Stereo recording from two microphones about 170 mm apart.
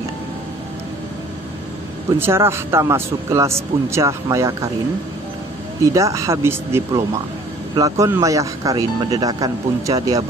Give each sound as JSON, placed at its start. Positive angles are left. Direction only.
{"t": 2.1, "sound": "speech", "side_deg": -15}
{"t": 5.9, "sound": "speech", "side_deg": -20}